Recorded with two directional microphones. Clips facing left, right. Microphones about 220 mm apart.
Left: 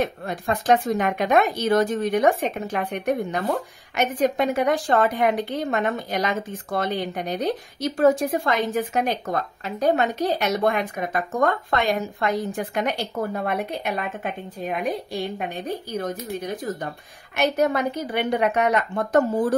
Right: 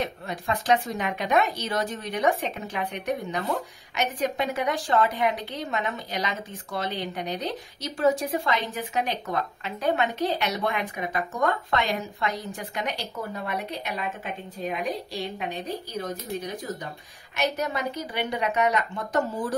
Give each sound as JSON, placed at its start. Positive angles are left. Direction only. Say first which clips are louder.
{"t": 0.0, "sound": "a woman's voice", "louder": "left 5 dB", "side_deg": 50}